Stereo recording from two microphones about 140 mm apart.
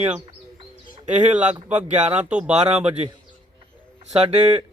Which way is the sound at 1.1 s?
60° right (ahead or behind).